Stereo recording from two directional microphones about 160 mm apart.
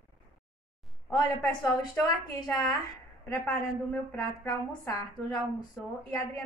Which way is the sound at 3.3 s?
10° left (ahead or behind).